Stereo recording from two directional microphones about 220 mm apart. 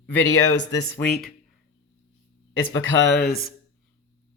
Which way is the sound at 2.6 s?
70° left (ahead or behind).